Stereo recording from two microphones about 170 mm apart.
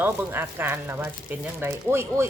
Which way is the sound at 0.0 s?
10° right (ahead or behind).